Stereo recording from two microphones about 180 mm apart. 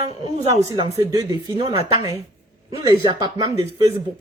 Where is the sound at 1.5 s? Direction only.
30° right (ahead or behind).